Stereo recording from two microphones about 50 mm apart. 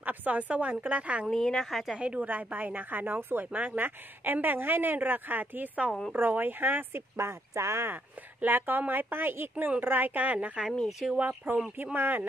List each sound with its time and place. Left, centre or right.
0.0 s speech: right
1.3 s a woman's voice: centre
2.0 s a woman's voice: right
2.2 s speech: right
7.2 s speech: right
7.9 s speech: right